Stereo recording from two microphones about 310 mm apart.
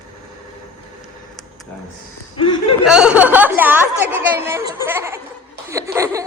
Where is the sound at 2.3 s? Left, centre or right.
Centre.